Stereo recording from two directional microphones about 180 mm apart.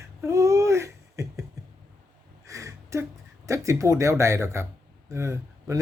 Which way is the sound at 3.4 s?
15° right (ahead or behind).